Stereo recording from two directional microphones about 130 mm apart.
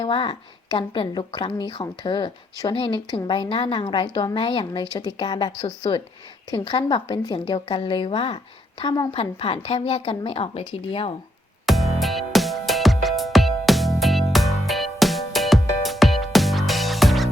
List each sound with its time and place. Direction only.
0.0 s a woman's voice: 40° left (ahead or behind)
11.6 s music: centre (ahead or behind)